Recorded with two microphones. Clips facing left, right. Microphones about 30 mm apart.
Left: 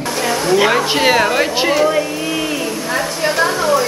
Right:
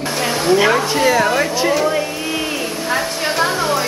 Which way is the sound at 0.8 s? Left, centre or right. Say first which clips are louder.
Left 1 dB; left.